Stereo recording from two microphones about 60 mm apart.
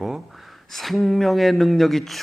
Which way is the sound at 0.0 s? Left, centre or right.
Centre.